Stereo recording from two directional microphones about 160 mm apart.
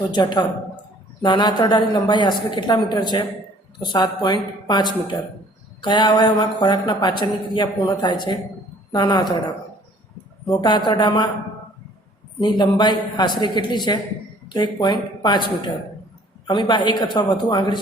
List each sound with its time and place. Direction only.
0.1 s speech: 30° left (ahead or behind)
10.4 s speech: 30° left (ahead or behind)
12.4 s speech: 30° left (ahead or behind)